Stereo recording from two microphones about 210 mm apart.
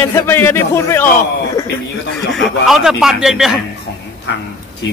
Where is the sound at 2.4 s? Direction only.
Centre (ahead or behind).